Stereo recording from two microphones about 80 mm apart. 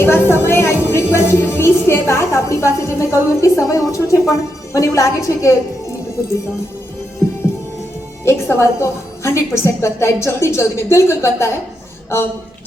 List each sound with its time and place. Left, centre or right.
0.0 s a woman's voice: left
8.2 s a woman's voice: left